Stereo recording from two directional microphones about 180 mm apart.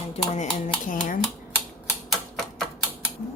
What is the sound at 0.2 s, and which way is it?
Speech, 35° left (ahead or behind).